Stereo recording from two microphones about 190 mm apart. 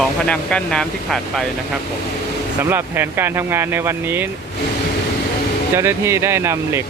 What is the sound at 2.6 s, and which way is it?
Speech, 10° right (ahead or behind).